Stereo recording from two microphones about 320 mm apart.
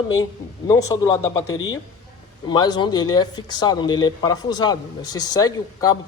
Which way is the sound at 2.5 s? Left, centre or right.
Centre.